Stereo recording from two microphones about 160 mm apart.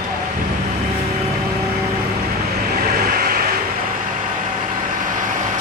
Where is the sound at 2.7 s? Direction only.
70° right (ahead or behind).